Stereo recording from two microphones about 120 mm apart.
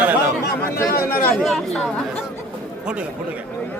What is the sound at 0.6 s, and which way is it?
Speech, 15° left (ahead or behind).